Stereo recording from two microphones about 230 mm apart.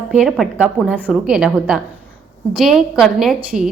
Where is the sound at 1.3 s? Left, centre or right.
Centre.